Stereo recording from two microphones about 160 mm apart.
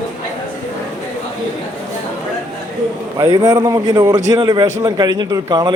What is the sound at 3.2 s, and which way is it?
Speech, 20° right (ahead or behind).